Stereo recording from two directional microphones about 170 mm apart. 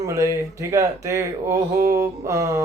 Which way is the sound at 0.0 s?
20° right (ahead or behind).